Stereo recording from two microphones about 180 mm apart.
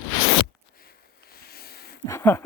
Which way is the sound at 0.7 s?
55° left (ahead or behind).